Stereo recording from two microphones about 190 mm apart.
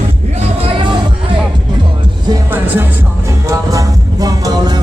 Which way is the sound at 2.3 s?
10° right (ahead or behind).